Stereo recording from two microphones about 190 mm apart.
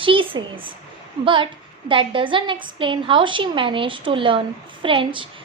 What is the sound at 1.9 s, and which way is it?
A woman's voice, 25° right (ahead or behind).